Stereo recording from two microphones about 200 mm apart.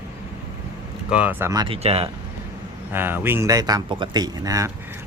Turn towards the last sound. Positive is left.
turn(degrees=-15)  # may be behind; listen again after turning